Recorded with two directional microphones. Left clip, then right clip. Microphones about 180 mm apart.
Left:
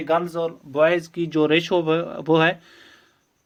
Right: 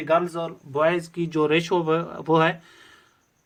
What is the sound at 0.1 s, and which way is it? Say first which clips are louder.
Speech: even; 55° left (ahead or behind).